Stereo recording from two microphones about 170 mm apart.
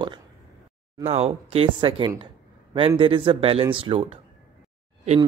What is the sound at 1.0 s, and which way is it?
Speech, 35° right (ahead or behind).